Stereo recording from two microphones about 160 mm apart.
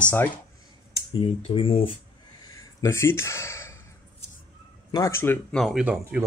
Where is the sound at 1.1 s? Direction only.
35° left (ahead or behind).